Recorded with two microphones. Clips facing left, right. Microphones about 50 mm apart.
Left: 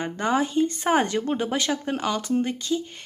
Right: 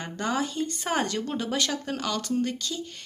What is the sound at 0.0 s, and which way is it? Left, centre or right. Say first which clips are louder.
Speech: left 5 dB; left.